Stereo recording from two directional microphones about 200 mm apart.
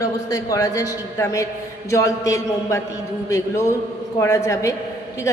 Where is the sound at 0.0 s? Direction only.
15° left (ahead or behind).